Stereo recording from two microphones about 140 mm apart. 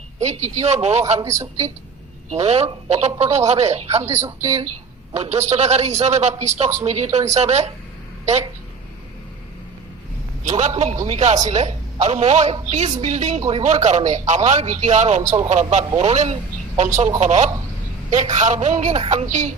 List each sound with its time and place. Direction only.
0.2 s speech: 55° right (ahead or behind)
1.2 s speech: 20° right (ahead or behind)
2.3 s speech: 50° right (ahead or behind)
4.0 s speech: 20° right (ahead or behind)
5.1 s speech: 50° right (ahead or behind)
10.4 s a man's voice: 55° right (ahead or behind)